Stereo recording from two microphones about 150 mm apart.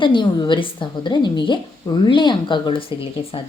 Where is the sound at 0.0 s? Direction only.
30° left (ahead or behind).